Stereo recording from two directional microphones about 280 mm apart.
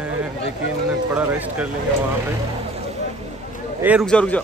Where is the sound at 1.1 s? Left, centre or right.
Centre.